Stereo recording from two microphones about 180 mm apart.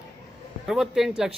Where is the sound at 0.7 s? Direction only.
Centre (ahead or behind).